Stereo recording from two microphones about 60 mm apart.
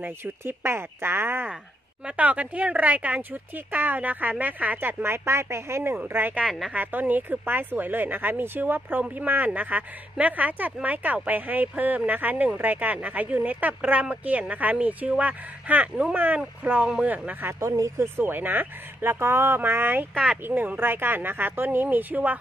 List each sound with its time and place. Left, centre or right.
0.0 s speech: right
2.0 s speech: right
6.0 s speech: right
16.8 s speech: centre
17.3 s speech: right
17.6 s speech: right
18.1 s speech: right